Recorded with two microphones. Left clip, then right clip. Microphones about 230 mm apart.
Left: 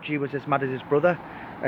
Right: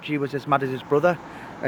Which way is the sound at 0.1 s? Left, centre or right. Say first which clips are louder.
Right 3 dB; centre.